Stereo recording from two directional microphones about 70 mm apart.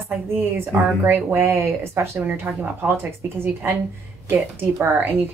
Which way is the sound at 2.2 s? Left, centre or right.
Right.